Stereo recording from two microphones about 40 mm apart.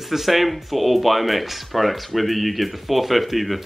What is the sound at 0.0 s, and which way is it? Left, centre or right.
Speech, centre.